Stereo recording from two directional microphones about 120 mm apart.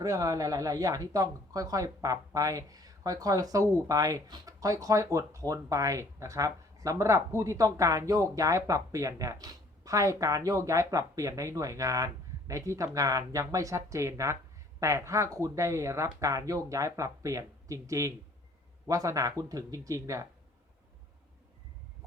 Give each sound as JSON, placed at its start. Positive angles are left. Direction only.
{"t": 0.0, "sound": "speech", "side_deg": -30}